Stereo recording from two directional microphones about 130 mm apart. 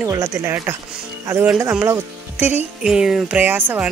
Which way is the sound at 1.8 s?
15° right (ahead or behind).